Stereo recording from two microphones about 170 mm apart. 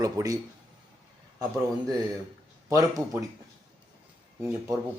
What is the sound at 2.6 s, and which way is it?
Speech, 20° right (ahead or behind).